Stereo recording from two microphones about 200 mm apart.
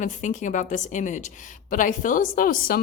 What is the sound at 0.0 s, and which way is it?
A woman's voice, 35° left (ahead or behind).